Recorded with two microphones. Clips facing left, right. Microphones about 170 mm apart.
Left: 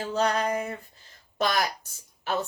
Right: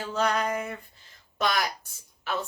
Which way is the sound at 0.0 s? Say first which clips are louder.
Left 1 dB; 35° left (ahead or behind).